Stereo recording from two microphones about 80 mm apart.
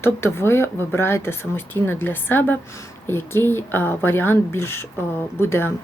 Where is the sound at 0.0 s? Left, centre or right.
Left.